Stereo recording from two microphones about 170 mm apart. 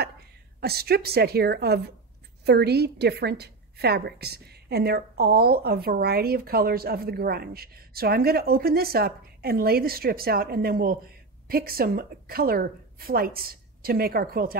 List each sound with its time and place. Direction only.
0.6 s a woman's voice: 65° right (ahead or behind)